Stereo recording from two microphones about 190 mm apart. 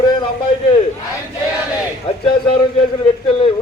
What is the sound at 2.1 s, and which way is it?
Speech, 25° left (ahead or behind).